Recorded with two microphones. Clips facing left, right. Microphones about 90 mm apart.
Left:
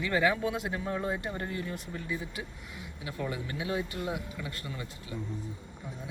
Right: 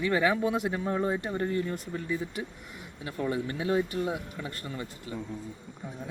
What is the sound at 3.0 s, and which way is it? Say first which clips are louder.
Speech: right 5 dB; 40° right (ahead or behind).